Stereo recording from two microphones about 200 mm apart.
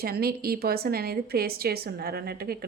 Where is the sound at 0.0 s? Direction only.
50° right (ahead or behind).